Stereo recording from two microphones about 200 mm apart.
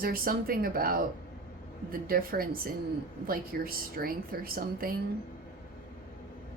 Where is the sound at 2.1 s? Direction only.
45° right (ahead or behind).